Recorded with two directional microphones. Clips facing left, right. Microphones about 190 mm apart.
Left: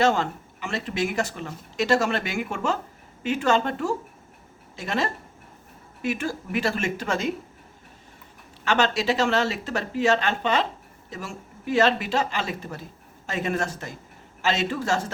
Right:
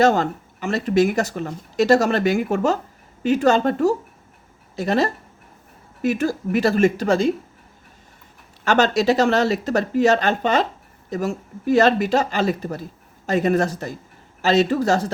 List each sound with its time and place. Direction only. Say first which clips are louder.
0.0 s speech: right 5 dB; 40° right (ahead or behind)
8.6 s speech: right 6 dB; 45° right (ahead or behind)